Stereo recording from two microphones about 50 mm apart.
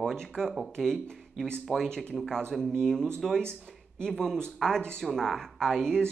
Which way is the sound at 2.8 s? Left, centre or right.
Centre.